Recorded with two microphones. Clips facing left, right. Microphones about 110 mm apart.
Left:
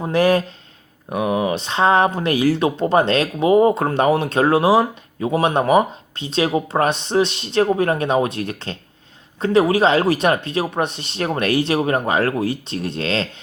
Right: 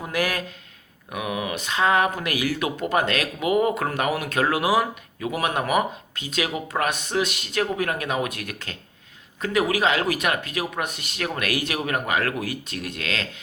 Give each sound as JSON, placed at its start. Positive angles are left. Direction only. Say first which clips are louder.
{"t": 0.0, "sound": "speech", "louder": "left 10 dB", "side_deg": 30}